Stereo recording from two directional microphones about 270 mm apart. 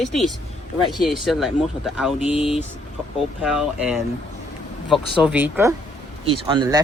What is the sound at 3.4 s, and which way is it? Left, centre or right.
Speech, centre.